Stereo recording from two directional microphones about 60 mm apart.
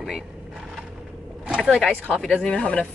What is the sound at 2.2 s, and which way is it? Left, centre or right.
Speech, centre.